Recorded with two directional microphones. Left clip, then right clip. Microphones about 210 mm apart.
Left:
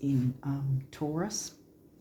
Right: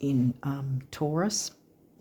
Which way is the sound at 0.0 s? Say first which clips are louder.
Right 4 dB; 55° right (ahead or behind).